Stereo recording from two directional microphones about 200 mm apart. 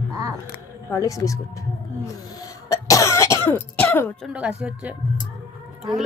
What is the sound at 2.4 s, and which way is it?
Cough, 15° left (ahead or behind).